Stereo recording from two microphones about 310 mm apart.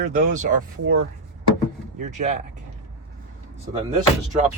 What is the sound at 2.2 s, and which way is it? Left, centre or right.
Speech, right.